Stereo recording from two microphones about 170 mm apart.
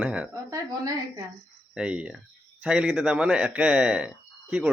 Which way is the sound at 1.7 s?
5° right (ahead or behind).